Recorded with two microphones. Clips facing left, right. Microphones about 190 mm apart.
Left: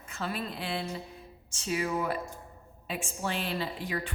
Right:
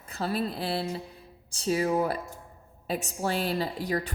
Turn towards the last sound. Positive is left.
turn(degrees=-40)  # may be behind; listen again after turning